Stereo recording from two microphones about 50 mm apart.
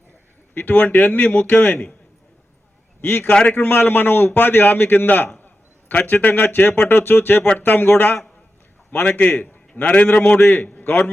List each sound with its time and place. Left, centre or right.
0.5 s a man's voice: left
3.0 s a man's voice: left
3.2 s a man's voice: left
3.6 s a man's voice: left
10.8 s a man's voice: left